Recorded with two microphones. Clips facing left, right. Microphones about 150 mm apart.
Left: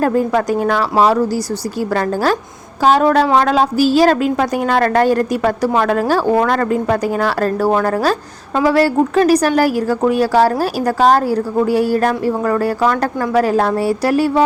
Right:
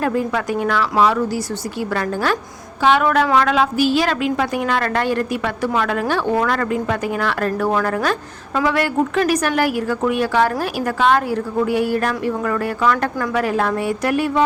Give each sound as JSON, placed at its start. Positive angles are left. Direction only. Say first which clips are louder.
{"t": 0.0, "sound": "a woman's voice", "louder": "left 5 dB", "side_deg": 40}